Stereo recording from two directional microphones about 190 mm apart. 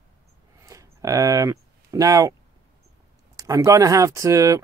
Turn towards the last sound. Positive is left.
turn(degrees=-15)  # may be behind; listen again after turning